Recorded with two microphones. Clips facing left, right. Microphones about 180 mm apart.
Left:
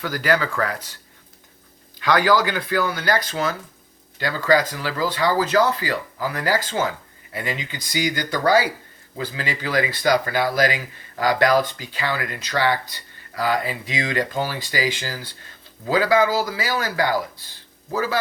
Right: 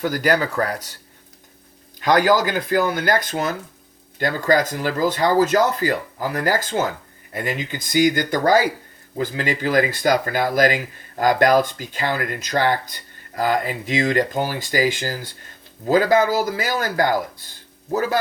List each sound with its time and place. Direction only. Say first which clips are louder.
0.0 s speech: right 2 dB; 45° right (ahead or behind)
2.0 s speech: right 2 dB; 45° right (ahead or behind)